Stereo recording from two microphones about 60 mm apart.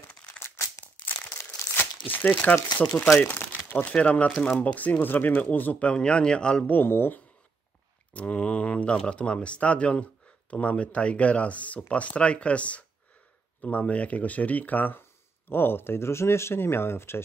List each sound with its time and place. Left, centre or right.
0.4 s crumpling: left
1.7 s speech: left; by 6.6 s centre
6.7 s speech: left
8.1 s speech: left